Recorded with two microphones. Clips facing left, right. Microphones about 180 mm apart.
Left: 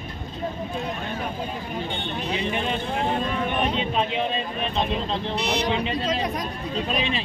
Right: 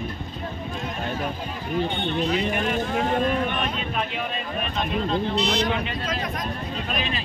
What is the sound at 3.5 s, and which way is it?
Speech, 25° left (ahead or behind).